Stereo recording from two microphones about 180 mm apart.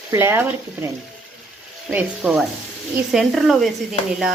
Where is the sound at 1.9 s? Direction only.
5° right (ahead or behind).